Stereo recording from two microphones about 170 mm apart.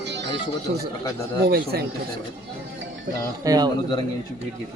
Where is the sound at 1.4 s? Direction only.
65° right (ahead or behind).